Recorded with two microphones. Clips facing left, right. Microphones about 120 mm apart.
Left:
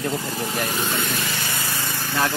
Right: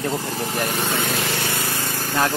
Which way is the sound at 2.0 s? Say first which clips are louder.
Right 2 dB; 40° right (ahead or behind).